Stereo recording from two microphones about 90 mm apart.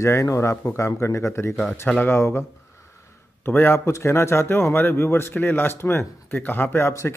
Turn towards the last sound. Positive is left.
turn(degrees=30)  # may be behind; listen again after turning